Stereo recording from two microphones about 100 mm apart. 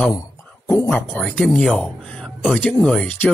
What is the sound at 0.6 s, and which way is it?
Speech, 20° left (ahead or behind).